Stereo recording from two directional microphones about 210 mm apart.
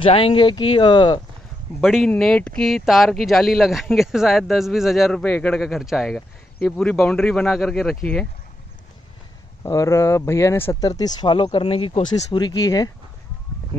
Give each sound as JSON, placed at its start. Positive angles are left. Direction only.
{"t": 0.0, "sound": "speech", "side_deg": 25}
{"t": 1.8, "sound": "speech", "side_deg": 0}
{"t": 9.6, "sound": "speech", "side_deg": 15}
{"t": 12.3, "sound": "speech", "side_deg": 20}